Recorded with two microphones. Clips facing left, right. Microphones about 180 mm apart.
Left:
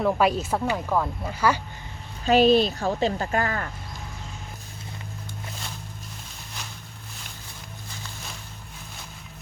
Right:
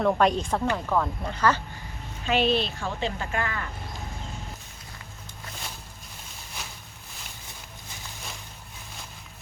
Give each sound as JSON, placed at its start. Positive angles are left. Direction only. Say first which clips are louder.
{"t": 0.0, "sound": "speech", "louder": "even", "side_deg": 5}
{"t": 2.2, "sound": "speech", "louder": "left 6 dB", "side_deg": 40}